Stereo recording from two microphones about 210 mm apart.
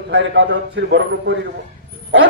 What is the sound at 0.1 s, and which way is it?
A man's voice, 60° right (ahead or behind).